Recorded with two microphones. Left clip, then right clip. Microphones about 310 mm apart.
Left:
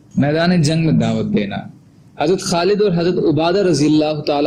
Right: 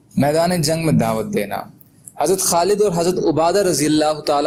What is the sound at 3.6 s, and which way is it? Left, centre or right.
Speech, right.